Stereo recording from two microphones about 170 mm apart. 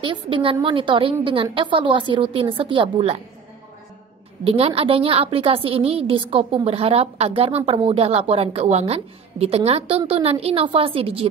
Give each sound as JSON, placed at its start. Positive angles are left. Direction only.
{"t": 0.0, "sound": "a woman's voice", "side_deg": -30}
{"t": 4.5, "sound": "a woman's voice", "side_deg": -35}